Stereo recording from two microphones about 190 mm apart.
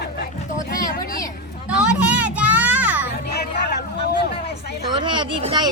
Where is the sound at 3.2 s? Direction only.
55° left (ahead or behind).